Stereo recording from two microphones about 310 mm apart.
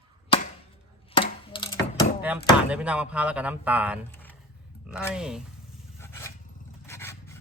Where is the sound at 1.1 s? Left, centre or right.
Centre.